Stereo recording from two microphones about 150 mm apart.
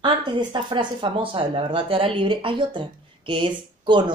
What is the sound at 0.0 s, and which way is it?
Speech, 30° right (ahead or behind).